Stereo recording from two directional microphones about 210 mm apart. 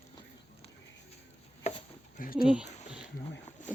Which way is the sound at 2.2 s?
45° left (ahead or behind).